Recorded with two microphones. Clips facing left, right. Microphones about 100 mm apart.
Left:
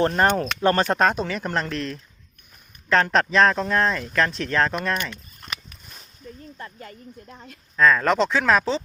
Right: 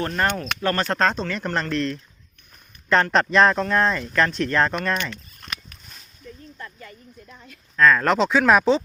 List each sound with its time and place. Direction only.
0.0 s speech: 30° left (ahead or behind); by 4.9 s centre (ahead or behind)
6.6 s speech: 40° left (ahead or behind)
7.8 s speech: centre (ahead or behind)